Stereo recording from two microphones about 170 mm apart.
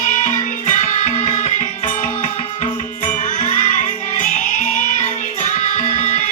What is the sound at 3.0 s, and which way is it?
Music, 45° left (ahead or behind).